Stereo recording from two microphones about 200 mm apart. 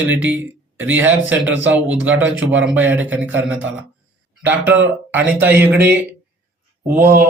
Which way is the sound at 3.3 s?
75° right (ahead or behind).